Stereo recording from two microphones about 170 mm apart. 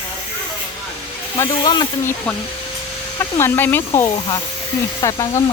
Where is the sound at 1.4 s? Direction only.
25° left (ahead or behind).